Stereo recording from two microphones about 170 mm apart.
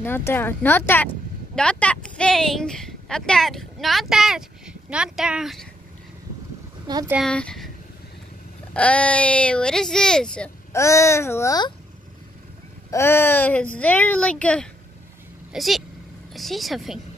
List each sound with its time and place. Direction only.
0.0 s speech: 10° left (ahead or behind)
6.9 s speech: 25° right (ahead or behind)
7.2 s speech: 5° left (ahead or behind)
8.7 s speech: 5° left (ahead or behind)
10.7 s speech: 15° left (ahead or behind)
12.9 s speech: 15° left (ahead or behind); by 17.0 s centre (ahead or behind)